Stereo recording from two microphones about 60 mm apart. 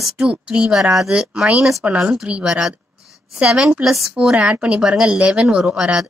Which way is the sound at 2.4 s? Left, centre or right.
Centre.